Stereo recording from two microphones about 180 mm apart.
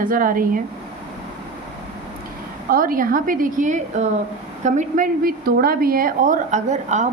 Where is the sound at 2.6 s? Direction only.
55° right (ahead or behind).